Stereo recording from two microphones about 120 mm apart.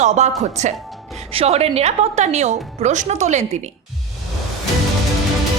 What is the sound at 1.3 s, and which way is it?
A woman's voice, 55° right (ahead or behind).